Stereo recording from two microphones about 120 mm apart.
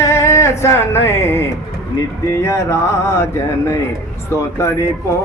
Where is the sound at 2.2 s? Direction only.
25° left (ahead or behind).